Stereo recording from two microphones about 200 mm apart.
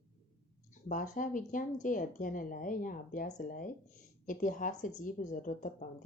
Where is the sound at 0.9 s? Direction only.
40° left (ahead or behind).